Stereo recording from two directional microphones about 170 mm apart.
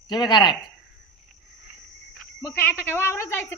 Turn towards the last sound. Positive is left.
turn(degrees=15)  # may be behind; listen again after turning